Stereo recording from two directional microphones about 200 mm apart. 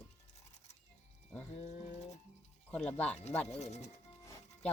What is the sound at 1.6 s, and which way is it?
Speech, 35° left (ahead or behind).